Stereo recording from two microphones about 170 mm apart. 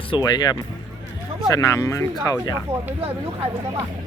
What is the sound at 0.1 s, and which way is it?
Speech, 25° left (ahead or behind).